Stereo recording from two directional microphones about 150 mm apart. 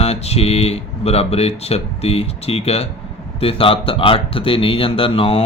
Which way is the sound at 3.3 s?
40° left (ahead or behind).